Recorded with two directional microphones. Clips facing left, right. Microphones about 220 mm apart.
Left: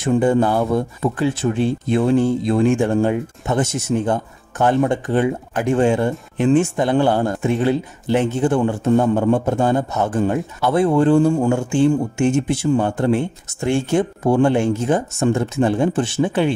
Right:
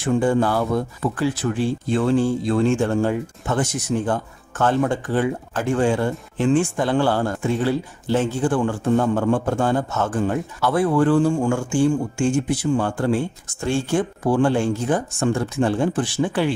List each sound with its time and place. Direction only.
0.0 s a man's voice: 20° left (ahead or behind)